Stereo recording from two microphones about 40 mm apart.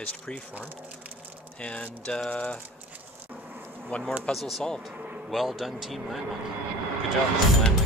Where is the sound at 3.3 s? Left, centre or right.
Right.